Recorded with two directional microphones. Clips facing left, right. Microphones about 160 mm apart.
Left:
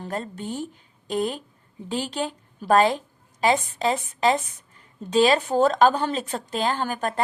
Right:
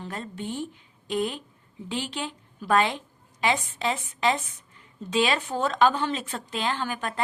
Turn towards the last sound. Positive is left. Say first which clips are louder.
# left 4 dB
turn(degrees=40)  # may be behind; listen again after turning